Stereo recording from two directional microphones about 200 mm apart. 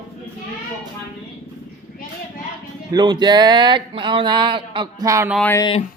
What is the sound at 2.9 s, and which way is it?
Speech, 20° right (ahead or behind).